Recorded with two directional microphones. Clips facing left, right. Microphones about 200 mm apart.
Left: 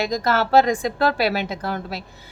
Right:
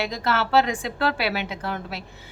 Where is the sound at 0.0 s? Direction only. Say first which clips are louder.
Left 4 dB; 40° left (ahead or behind).